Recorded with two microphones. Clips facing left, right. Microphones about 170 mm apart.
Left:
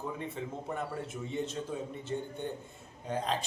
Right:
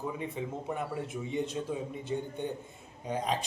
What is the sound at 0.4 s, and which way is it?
Speech, 10° right (ahead or behind).